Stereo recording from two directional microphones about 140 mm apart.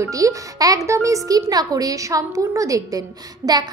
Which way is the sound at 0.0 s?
25° right (ahead or behind).